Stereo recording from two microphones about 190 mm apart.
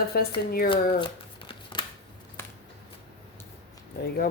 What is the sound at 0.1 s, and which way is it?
Speech, 55° left (ahead or behind).